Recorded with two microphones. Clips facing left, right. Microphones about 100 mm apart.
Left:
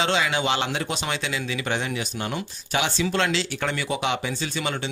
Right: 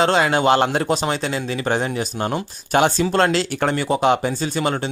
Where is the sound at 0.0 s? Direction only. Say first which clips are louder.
Right 7 dB; 45° right (ahead or behind).